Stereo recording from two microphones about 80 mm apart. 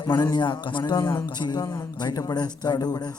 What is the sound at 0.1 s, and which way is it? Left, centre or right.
Speech, left.